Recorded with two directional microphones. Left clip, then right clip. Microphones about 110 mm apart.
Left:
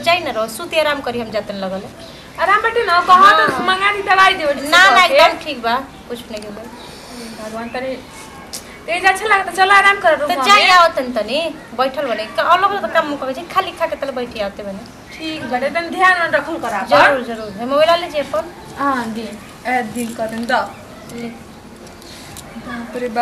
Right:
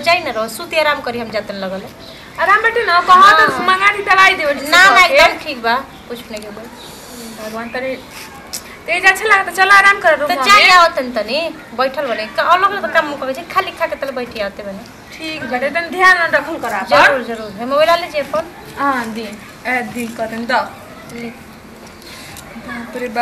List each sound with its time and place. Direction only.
0.0 s a woman's voice: centre (ahead or behind)
7.7 s a woman's voice: 5° right (ahead or behind)